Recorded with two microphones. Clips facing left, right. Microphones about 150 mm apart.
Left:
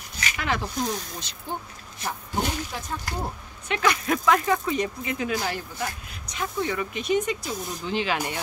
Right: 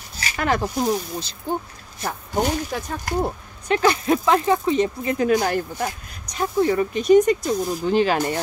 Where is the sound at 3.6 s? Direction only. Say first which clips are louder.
Right 6 dB; 35° right (ahead or behind).